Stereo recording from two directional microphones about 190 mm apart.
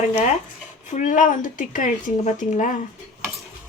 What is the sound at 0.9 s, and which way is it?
Speech, 40° left (ahead or behind).